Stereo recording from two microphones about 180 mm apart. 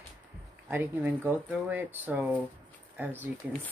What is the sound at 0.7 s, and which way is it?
Speech, 10° right (ahead or behind).